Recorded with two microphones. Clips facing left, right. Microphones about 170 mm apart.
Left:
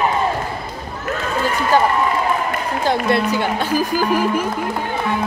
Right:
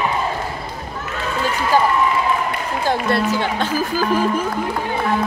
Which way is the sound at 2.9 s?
15° left (ahead or behind).